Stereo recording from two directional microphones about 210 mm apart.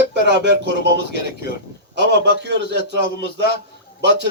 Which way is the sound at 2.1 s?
55° right (ahead or behind).